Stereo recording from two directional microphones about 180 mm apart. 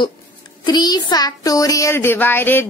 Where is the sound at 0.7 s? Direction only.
25° left (ahead or behind).